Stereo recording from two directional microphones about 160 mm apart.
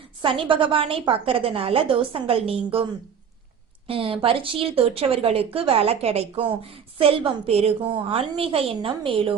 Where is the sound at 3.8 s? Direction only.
35° right (ahead or behind).